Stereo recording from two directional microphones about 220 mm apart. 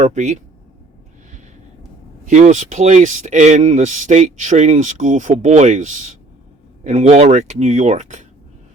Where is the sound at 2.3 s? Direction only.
35° right (ahead or behind).